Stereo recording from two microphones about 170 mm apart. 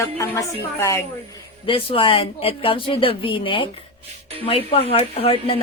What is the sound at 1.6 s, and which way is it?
Speech, 30° left (ahead or behind).